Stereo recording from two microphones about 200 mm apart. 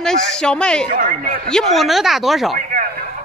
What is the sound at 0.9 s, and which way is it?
Speech, 40° right (ahead or behind).